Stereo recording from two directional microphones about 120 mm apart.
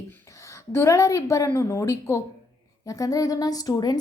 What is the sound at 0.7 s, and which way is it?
A woman's voice, 25° left (ahead or behind).